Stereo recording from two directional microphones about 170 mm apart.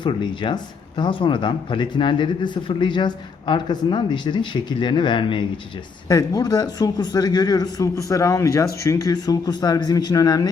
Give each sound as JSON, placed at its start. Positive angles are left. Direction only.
{"t": 0.0, "sound": "speech", "side_deg": 25}